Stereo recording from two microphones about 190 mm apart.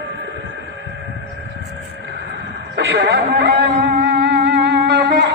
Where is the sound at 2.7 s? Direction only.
60° right (ahead or behind).